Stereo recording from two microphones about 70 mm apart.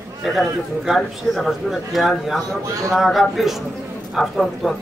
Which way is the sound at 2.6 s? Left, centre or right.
Right.